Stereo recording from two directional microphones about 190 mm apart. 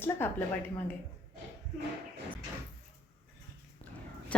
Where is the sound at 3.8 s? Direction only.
30° left (ahead or behind).